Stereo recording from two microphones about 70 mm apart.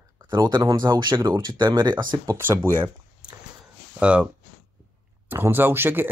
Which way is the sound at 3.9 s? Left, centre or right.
Centre.